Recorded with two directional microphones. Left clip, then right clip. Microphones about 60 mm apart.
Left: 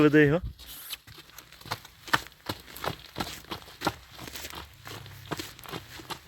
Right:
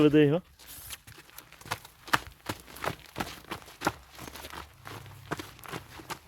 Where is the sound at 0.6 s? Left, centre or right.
Left.